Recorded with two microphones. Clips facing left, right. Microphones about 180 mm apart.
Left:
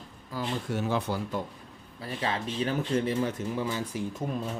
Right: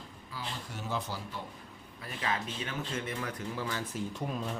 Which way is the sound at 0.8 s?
60° left (ahead or behind).